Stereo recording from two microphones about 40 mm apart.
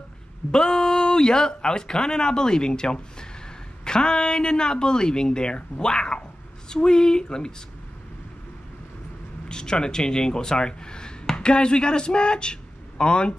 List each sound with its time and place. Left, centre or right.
0.5 s speech: centre
9.5 s speech: centre